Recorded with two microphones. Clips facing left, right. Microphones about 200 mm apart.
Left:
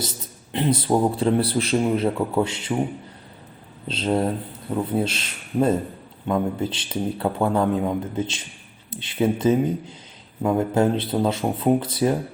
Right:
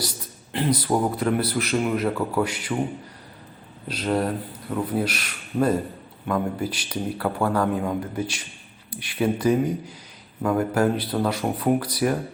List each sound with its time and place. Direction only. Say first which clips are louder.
0.5 s speech: left 2 dB; 25° left (ahead or behind)
3.8 s speech: left 2 dB; 25° left (ahead or behind)